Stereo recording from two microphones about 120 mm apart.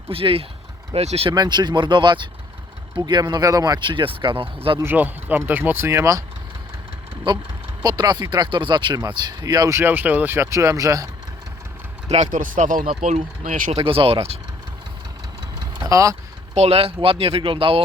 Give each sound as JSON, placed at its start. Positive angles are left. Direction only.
{"t": 0.1, "sound": "speech", "side_deg": -50}
{"t": 1.3, "sound": "speech", "side_deg": -35}
{"t": 4.8, "sound": "speech", "side_deg": -15}
{"t": 7.3, "sound": "speech", "side_deg": -40}
{"t": 12.0, "sound": "speech", "side_deg": -70}
{"t": 13.8, "sound": "speech", "side_deg": -50}
{"t": 15.6, "sound": "vehicle", "side_deg": -30}
{"t": 16.6, "sound": "speech", "side_deg": -55}